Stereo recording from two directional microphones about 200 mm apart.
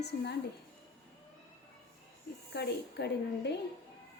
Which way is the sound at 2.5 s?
55° left (ahead or behind).